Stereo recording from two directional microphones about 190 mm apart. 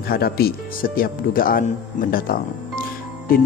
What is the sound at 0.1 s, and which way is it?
Speech, 55° left (ahead or behind).